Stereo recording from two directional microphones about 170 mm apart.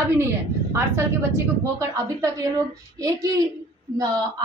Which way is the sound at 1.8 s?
20° right (ahead or behind).